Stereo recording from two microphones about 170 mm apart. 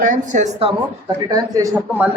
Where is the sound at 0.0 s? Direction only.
50° right (ahead or behind).